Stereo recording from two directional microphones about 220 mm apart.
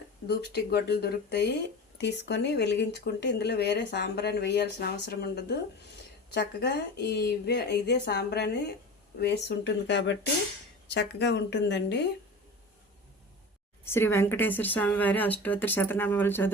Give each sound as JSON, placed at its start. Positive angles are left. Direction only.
{"t": 0.3, "sound": "speech", "side_deg": 45}
{"t": 13.8, "sound": "speech", "side_deg": 10}